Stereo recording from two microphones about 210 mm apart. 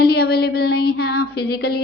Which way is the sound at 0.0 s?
50° left (ahead or behind).